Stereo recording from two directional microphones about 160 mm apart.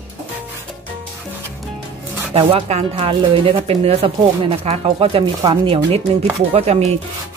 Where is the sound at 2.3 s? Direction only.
35° right (ahead or behind).